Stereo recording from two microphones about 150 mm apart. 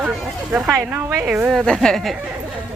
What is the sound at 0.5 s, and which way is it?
A woman's voice, 5° right (ahead or behind).